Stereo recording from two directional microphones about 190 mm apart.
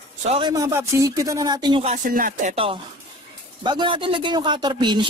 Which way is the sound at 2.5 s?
30° right (ahead or behind).